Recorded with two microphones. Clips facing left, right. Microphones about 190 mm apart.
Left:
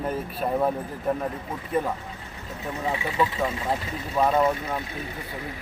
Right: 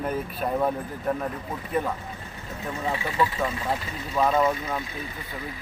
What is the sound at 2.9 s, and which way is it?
Speech, 15° left (ahead or behind).